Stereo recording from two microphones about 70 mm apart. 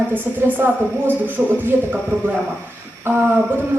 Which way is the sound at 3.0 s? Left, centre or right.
Right.